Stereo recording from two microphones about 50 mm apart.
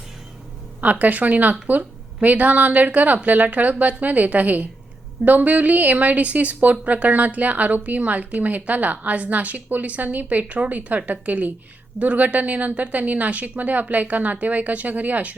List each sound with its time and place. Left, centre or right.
0.8 s a woman's voice: right